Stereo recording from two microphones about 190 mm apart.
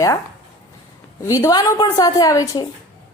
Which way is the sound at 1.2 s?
15° left (ahead or behind).